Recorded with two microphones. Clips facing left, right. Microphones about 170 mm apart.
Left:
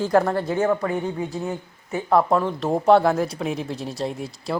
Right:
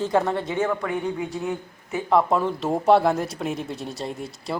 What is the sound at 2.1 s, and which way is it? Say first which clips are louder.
A man's voice: left 1 dB; centre (ahead or behind).